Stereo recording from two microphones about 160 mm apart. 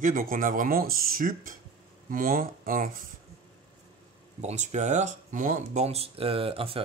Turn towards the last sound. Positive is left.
turn(degrees=-35)  # may be behind; listen again after turning